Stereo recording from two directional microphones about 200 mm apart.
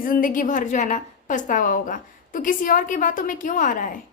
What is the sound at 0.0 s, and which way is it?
A woman's voice, 45° left (ahead or behind).